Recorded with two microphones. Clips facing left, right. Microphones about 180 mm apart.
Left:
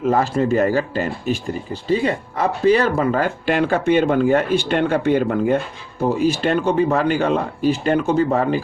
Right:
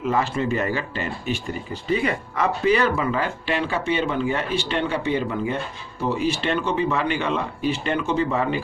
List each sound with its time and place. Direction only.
0.0 s speech: 45° left (ahead or behind)
1.9 s speech: 30° left (ahead or behind); by 5.5 s 55° left (ahead or behind)
6.0 s speech: 45° left (ahead or behind)